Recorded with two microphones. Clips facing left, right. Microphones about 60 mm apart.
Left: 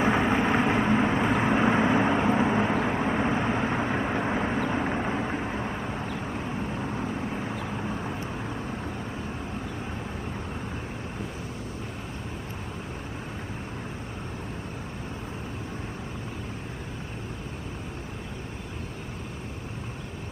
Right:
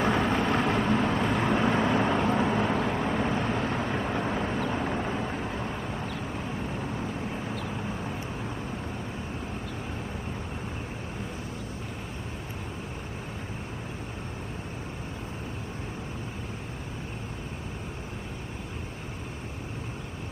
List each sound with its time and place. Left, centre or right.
0.0 s vehicle: centre